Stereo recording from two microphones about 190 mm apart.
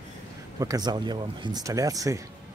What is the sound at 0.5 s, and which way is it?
Speech, 20° right (ahead or behind).